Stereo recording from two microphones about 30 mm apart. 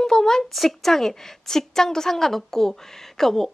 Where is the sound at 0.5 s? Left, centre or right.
Centre.